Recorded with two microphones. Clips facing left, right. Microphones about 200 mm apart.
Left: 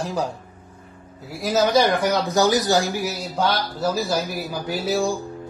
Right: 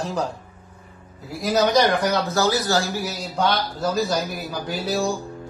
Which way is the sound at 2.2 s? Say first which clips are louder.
Left 3 dB; 15° left (ahead or behind).